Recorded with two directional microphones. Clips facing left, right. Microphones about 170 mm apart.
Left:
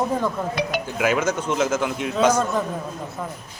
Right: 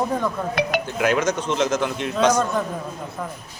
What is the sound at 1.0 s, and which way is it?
A man's voice, 5° left (ahead or behind).